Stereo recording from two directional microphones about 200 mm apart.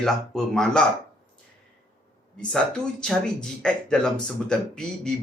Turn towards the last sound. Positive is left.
turn(degrees=5)  # may be behind; listen again after turning